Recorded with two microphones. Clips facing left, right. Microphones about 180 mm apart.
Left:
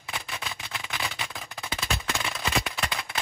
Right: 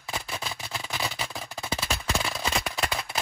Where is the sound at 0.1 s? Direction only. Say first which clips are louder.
Right 2 dB; 35° right (ahead or behind).